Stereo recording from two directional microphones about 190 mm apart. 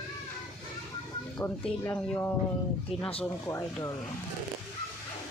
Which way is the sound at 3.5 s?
15° left (ahead or behind).